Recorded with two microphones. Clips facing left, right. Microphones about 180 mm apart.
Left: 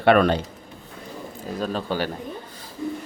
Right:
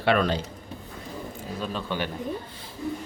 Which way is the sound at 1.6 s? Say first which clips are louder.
Left 5 dB; 40° left (ahead or behind).